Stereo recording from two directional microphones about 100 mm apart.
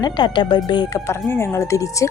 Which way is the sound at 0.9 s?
25° left (ahead or behind).